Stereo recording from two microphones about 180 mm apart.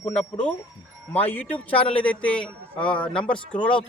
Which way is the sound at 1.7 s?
30° left (ahead or behind).